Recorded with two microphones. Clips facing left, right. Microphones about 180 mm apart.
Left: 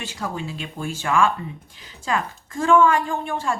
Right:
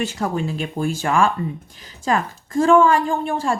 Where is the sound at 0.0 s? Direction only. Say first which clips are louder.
Right 7 dB; 50° right (ahead or behind).